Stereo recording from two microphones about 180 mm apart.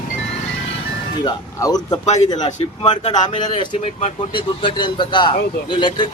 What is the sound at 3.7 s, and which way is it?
Speech, 40° left (ahead or behind).